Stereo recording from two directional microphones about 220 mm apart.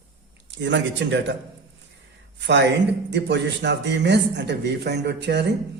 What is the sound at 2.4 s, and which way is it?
Speech, 55° right (ahead or behind).